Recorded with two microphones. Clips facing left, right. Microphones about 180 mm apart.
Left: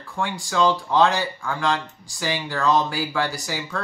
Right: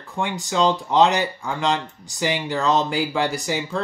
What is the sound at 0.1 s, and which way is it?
Speech, 20° right (ahead or behind).